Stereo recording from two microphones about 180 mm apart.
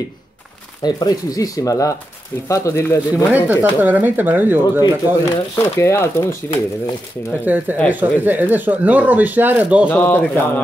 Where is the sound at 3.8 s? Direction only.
10° right (ahead or behind).